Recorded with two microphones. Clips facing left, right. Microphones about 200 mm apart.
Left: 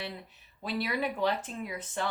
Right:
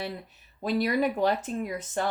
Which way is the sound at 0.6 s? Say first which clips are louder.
Right 7 dB; 45° right (ahead or behind).